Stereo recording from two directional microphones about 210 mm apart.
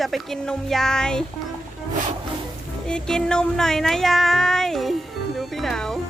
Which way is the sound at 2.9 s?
5° left (ahead or behind).